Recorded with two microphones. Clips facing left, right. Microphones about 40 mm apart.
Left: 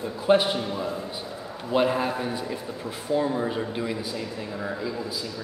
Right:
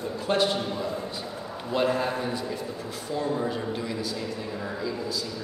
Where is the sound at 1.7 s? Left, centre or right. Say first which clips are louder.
Left 2 dB; centre.